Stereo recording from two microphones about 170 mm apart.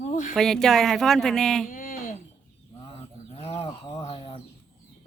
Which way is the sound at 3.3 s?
35° left (ahead or behind).